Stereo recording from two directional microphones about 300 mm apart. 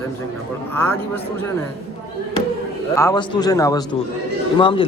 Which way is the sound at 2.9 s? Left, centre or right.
Centre.